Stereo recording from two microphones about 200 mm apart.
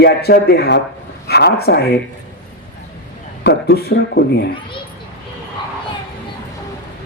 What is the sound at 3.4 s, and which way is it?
Speech, 55° left (ahead or behind).